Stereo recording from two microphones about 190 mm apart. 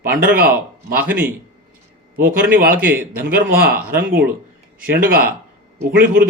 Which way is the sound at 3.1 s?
55° right (ahead or behind).